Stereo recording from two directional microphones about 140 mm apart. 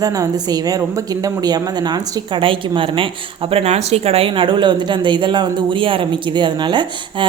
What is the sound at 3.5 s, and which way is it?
Speech, 50° right (ahead or behind).